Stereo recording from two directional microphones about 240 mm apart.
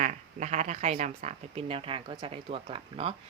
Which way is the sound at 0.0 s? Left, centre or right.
Right.